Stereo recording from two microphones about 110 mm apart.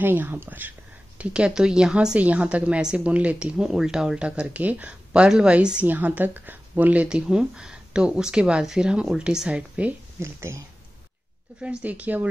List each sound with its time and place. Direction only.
0.0 s speech: 20° right (ahead or behind)
10.2 s speech: 25° right (ahead or behind)
11.6 s speech: 10° right (ahead or behind)